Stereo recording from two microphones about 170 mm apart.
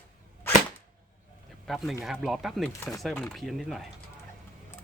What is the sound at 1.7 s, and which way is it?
Speech, centre (ahead or behind).